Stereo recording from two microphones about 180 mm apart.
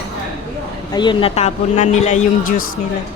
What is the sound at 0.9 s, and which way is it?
Speech, 25° left (ahead or behind).